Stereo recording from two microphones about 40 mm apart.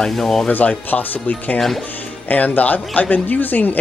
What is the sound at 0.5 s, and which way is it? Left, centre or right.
Speech, left.